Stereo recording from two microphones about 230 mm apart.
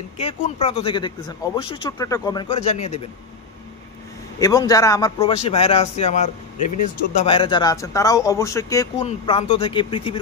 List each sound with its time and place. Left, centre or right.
0.2 s speech: left
4.4 s speech: centre
5.2 s speech: left
7.2 s speech: left
9.0 s speech: left